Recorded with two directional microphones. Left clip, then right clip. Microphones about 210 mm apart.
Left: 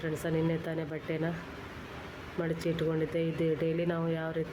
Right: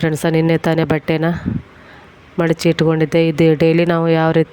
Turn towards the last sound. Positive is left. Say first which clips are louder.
# right 19 dB
turn(degrees=-45)  # may be behind; listen again after turning